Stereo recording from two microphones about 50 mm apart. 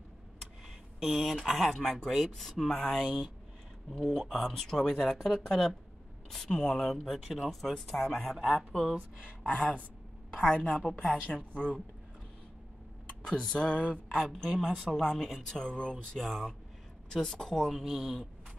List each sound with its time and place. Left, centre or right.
0.9 s speech: centre
1.7 s speech: centre
7.1 s speech: centre
10.5 s a woman's voice: left
13.2 s speech: centre
14.2 s speech: centre
15.0 s speech: centre